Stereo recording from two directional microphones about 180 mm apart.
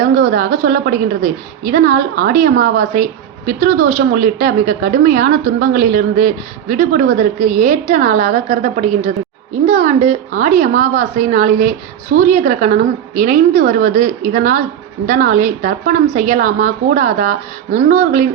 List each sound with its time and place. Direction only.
0.0 s a woman's voice: 50° right (ahead or behind)